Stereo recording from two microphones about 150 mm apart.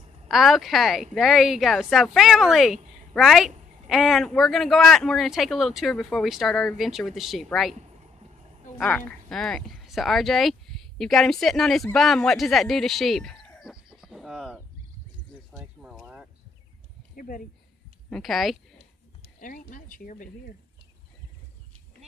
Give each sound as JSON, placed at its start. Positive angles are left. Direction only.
{"t": 0.3, "sound": "speech", "side_deg": 0}
{"t": 8.9, "sound": "speech", "side_deg": 5}
{"t": 15.5, "sound": "horse", "side_deg": -5}
{"t": 17.1, "sound": "a sound", "side_deg": 70}
{"t": 18.1, "sound": "speech", "side_deg": 0}
{"t": 19.4, "sound": "speech", "side_deg": 65}